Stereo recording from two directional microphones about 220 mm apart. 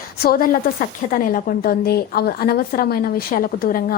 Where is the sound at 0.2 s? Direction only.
40° left (ahead or behind).